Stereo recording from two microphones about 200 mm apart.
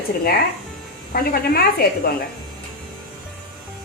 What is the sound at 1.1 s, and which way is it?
Speech, 50° left (ahead or behind).